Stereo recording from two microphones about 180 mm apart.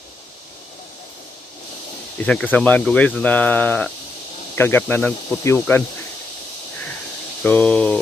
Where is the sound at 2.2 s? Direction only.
5° left (ahead or behind).